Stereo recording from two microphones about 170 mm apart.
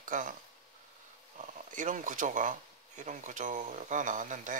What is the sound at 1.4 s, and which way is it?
Speech, 50° right (ahead or behind).